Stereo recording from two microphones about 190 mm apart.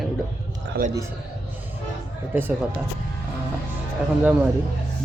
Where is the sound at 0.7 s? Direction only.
55° right (ahead or behind).